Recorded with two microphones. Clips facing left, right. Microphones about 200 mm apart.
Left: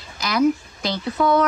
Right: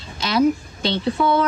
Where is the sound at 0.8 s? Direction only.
30° right (ahead or behind).